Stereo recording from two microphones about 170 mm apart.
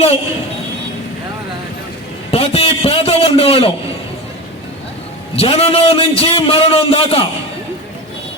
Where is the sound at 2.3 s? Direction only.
35° left (ahead or behind).